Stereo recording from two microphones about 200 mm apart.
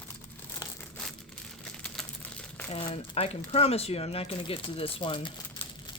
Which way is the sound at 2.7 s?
30° left (ahead or behind).